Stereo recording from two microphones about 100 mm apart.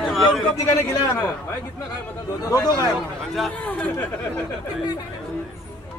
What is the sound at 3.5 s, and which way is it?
Speech, 15° left (ahead or behind).